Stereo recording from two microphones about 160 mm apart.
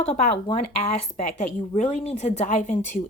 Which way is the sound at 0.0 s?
40° left (ahead or behind).